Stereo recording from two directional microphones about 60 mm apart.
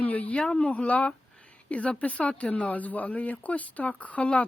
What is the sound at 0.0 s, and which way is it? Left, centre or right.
Speech, left.